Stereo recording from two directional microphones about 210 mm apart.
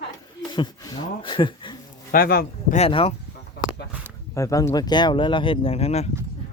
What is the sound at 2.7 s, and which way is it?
Speech, 25° left (ahead or behind).